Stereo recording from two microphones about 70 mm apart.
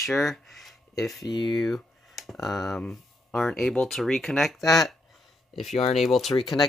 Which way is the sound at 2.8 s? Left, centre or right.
Left.